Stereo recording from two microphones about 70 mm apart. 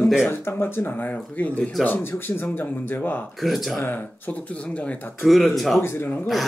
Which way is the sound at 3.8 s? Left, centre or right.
Left.